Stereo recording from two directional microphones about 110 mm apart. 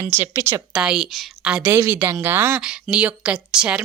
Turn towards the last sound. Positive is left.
turn(degrees=-10)  # may be behind; listen again after turning